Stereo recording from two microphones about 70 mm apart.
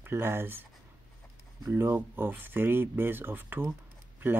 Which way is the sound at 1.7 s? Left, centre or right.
Right.